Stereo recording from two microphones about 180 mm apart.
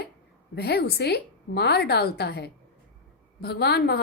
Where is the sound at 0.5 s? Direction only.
65° left (ahead or behind).